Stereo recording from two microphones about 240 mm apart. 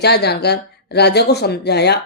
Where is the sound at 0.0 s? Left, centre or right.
Left.